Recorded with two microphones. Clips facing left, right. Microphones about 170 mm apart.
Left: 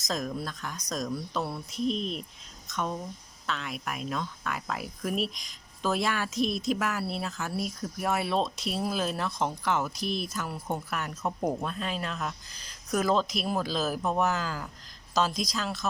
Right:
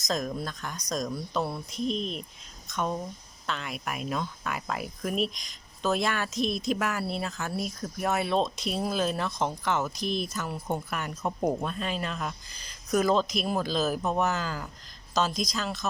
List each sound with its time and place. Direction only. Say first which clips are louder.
0.1 s speech: right 2 dB; 5° left (ahead or behind)
2.6 s a sound: right 2 dB; centre (ahead or behind)
3.4 s speech: even; centre (ahead or behind)